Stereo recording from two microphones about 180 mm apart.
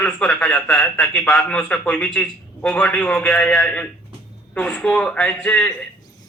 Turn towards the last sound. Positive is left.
turn(degrees=5)  # may be behind; listen again after turning